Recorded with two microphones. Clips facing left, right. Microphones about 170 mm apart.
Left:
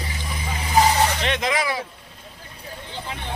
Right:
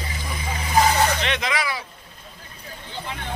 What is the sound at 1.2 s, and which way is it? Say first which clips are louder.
Speech: left 2 dB; 40° left (ahead or behind).